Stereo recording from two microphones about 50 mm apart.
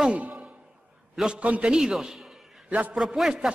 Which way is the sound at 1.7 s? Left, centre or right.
Centre.